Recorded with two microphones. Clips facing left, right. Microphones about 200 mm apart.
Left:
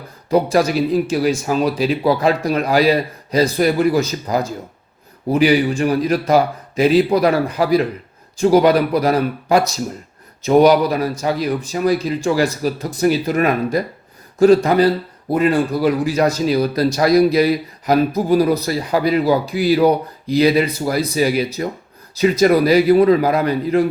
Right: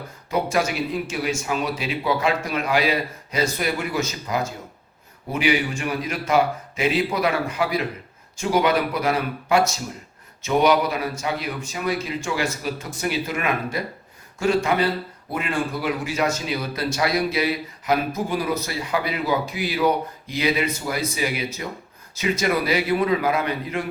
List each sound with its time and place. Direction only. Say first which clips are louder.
0.3 s a man's voice: left 7 dB; 35° left (ahead or behind)